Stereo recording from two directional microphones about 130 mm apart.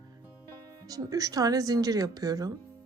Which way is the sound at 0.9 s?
25° right (ahead or behind).